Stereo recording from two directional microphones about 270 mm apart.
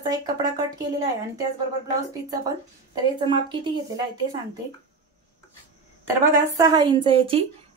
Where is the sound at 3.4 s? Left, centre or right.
Centre.